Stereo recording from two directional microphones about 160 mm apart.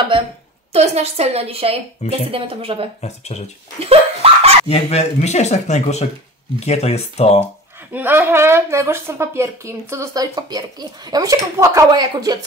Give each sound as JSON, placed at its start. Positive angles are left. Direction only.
{"t": 0.7, "sound": "a woman's voice", "side_deg": -40}
{"t": 3.0, "sound": "speech", "side_deg": 45}
{"t": 3.8, "sound": "a sound", "side_deg": -40}
{"t": 4.6, "sound": "speech", "side_deg": 45}
{"t": 7.9, "sound": "a woman's voice", "side_deg": -10}